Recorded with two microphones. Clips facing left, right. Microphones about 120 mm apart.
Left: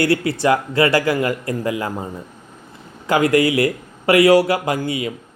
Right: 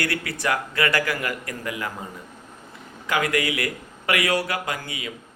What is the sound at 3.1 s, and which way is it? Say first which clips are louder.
A man's voice: left 8 dB; 30° left (ahead or behind).